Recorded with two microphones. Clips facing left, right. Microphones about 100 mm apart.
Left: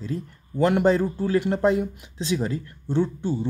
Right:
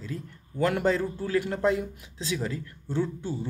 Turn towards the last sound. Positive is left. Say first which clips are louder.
# left 5 dB
turn(degrees=25)  # may be behind; listen again after turning